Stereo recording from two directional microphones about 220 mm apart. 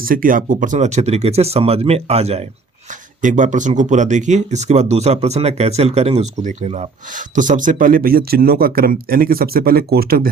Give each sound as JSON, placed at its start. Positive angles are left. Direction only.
{"t": 0.0, "sound": "speech", "side_deg": -40}